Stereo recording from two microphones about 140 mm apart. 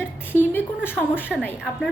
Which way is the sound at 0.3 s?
15° left (ahead or behind).